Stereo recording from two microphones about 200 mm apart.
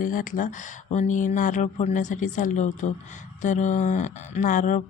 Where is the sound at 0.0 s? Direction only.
40° left (ahead or behind).